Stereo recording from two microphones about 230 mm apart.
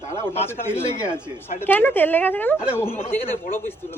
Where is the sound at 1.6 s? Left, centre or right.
Centre.